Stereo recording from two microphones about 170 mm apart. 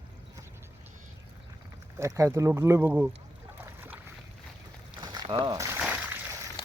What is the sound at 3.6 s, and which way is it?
Boat, 15° right (ahead or behind).